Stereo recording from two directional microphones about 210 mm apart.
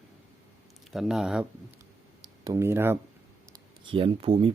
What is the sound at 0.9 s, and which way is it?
Speech, centre (ahead or behind).